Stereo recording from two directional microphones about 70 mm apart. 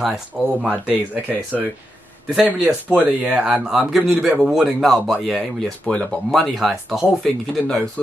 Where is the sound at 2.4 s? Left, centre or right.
Centre.